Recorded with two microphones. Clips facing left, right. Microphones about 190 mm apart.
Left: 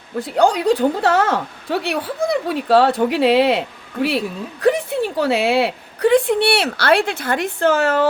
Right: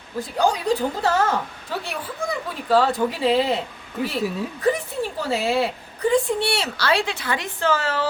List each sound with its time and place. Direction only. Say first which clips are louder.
0.2 s a woman's voice: left 5 dB; 70° left (ahead or behind)
4.6 s a woman's voice: left 6 dB; 80° left; by 8.0 s 55° left (ahead or behind)